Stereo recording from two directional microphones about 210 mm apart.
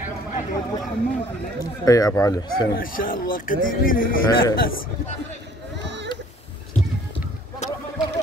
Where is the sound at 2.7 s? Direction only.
40° left (ahead or behind).